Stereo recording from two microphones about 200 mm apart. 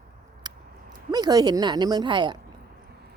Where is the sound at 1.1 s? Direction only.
20° right (ahead or behind).